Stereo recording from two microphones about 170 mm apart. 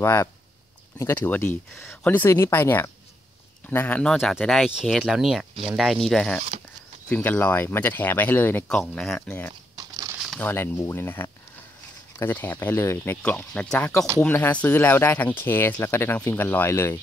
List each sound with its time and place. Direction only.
0.0 s speech: 15° left (ahead or behind)
9.8 s crumpling: 20° right (ahead or behind)
10.1 s a sound: centre (ahead or behind)
10.4 s speech: 15° left (ahead or behind)